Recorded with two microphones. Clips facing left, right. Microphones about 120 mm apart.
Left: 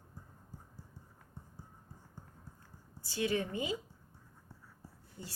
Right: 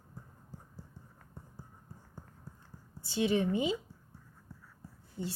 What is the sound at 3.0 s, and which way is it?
Speech, 20° right (ahead or behind).